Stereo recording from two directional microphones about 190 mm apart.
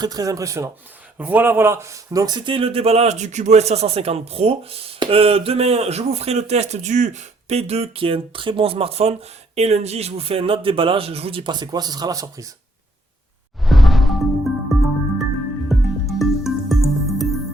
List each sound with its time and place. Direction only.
0.0 s speech: 20° right (ahead or behind)
13.7 s music: centre (ahead or behind)